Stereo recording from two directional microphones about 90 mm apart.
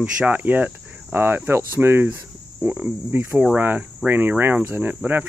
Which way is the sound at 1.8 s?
25° right (ahead or behind).